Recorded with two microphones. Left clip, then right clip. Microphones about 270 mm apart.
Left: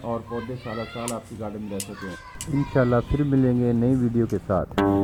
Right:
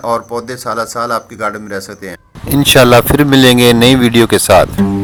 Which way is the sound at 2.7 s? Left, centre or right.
Right.